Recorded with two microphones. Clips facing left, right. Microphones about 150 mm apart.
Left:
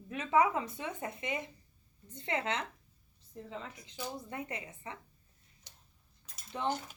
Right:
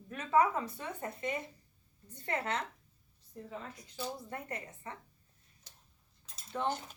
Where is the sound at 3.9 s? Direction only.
15° left (ahead or behind).